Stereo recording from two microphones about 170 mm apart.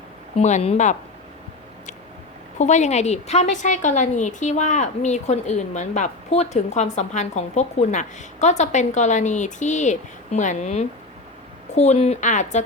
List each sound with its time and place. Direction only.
0.3 s a woman's voice: 40° left (ahead or behind)
2.6 s a woman's voice: 45° left (ahead or behind)